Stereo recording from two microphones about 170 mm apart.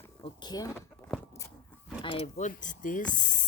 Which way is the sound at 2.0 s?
30° left (ahead or behind).